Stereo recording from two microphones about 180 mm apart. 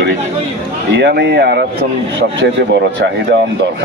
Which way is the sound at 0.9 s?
75° right (ahead or behind).